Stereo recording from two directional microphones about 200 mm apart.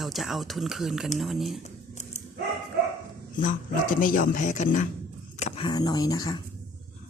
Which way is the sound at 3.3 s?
40° left (ahead or behind).